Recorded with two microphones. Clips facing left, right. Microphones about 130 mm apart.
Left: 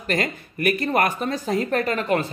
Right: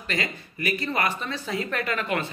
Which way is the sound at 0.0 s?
50° left (ahead or behind).